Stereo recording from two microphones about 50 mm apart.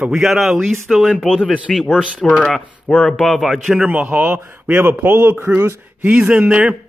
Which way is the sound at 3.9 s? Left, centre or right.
Right.